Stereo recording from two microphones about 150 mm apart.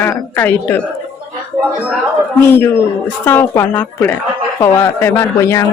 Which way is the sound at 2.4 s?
15° left (ahead or behind).